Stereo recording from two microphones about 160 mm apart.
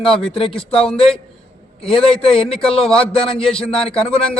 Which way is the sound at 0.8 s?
5° left (ahead or behind).